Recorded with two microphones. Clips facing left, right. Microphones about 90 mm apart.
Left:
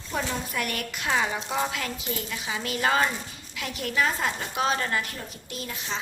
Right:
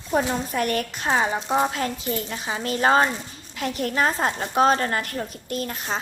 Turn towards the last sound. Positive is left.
turn(degrees=-50)  # may be behind; listen again after turning